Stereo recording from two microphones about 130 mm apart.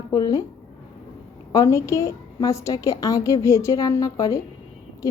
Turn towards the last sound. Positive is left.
turn(degrees=25)  # may be behind; listen again after turning